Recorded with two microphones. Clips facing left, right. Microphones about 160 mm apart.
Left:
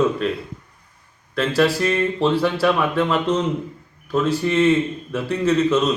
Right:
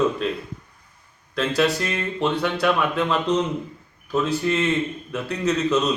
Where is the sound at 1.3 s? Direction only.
Centre (ahead or behind).